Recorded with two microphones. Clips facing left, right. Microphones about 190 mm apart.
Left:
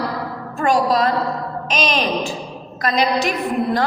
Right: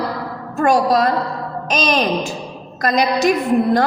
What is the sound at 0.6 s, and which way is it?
Speech, 45° right (ahead or behind).